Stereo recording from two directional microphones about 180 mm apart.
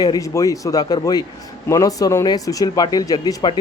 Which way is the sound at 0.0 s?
20° left (ahead or behind).